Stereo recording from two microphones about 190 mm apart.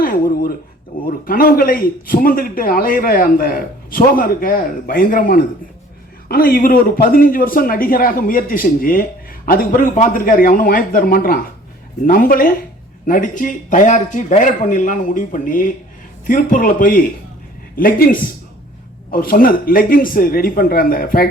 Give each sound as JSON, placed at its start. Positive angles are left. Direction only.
{"t": 0.0, "sound": "a man's voice", "side_deg": 45}